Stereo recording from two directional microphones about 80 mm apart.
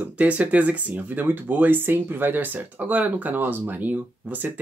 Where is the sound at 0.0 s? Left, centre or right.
Centre.